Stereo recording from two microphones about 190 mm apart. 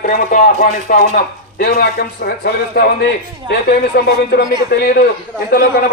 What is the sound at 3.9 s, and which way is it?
Speech, 55° left (ahead or behind).